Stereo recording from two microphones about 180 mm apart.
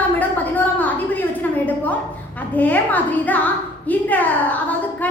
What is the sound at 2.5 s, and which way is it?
A woman's voice, 10° left (ahead or behind).